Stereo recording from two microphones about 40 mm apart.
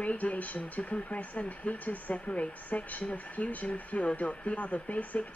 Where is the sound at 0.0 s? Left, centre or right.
Left.